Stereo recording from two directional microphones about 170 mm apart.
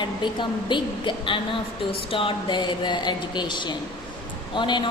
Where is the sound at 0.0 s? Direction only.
25° left (ahead or behind).